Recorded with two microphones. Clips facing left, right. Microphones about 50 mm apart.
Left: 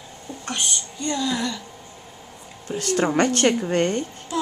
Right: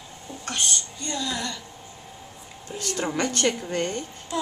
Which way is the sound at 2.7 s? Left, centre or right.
Left.